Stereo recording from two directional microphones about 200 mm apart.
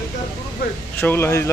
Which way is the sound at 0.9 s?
10° left (ahead or behind).